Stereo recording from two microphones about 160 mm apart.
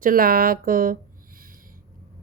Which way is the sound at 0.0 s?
65° right (ahead or behind).